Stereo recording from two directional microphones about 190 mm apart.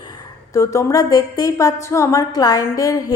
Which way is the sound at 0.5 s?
15° left (ahead or behind).